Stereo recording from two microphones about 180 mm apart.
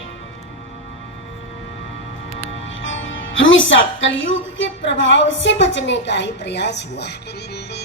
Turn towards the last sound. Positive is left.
turn(degrees=70)  # may be behind; listen again after turning